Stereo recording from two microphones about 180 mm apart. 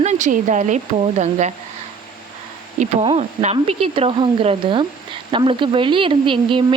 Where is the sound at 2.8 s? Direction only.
35° right (ahead or behind).